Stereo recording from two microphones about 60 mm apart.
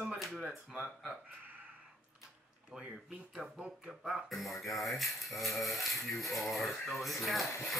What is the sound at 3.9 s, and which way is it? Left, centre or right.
Speech, centre.